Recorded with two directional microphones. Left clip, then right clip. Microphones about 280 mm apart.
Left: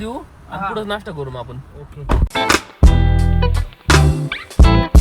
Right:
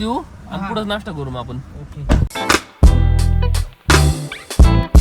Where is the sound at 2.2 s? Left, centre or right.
Centre.